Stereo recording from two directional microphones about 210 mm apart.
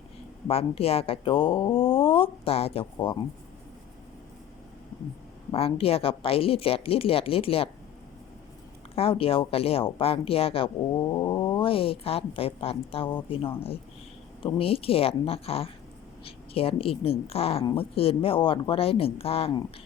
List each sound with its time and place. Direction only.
0.4 s speech: 30° left (ahead or behind)
5.5 s speech: 25° left (ahead or behind)
9.0 s speech: 25° left (ahead or behind)